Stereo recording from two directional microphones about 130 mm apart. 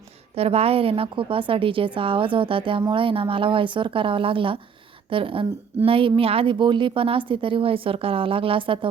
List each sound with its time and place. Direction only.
0.3 s a woman's voice: 50° right (ahead or behind)